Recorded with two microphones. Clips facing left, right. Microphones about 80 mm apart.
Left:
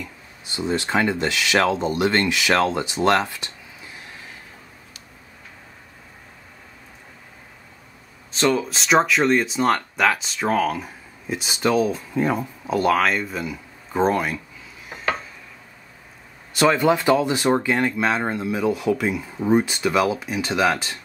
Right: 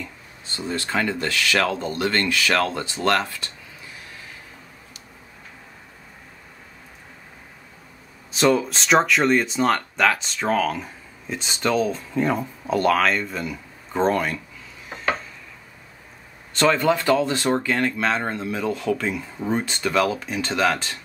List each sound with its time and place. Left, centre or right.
0.5 s speech: centre
8.3 s speech: centre
16.5 s speech: centre